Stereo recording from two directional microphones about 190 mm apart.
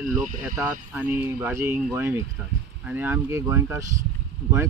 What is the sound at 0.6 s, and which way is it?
Speech, 10° right (ahead or behind).